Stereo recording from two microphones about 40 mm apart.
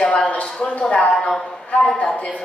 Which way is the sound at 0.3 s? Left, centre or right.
Left.